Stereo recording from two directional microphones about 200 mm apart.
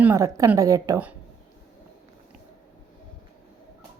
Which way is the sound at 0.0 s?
15° right (ahead or behind).